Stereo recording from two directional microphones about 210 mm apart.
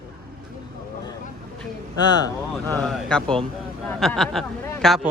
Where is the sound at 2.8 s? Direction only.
5° left (ahead or behind).